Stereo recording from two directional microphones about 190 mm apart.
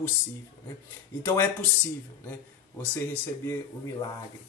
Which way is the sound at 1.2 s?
10° left (ahead or behind).